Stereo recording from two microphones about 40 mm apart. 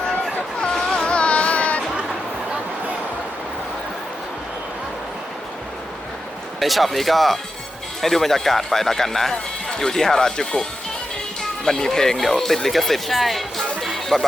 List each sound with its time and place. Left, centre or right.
0.6 s a sound: centre
1.0 s music: left
6.6 s speech: centre
13.8 s music: centre